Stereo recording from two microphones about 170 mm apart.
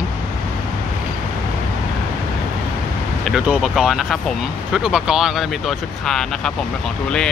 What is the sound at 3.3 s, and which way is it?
Speech, 5° right (ahead or behind).